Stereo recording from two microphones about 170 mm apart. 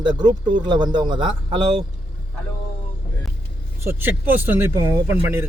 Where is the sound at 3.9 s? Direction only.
10° right (ahead or behind).